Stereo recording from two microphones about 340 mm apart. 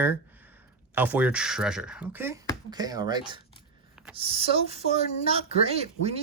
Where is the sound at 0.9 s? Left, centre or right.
Centre.